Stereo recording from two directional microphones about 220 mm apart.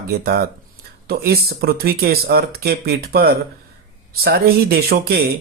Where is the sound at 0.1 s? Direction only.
45° right (ahead or behind).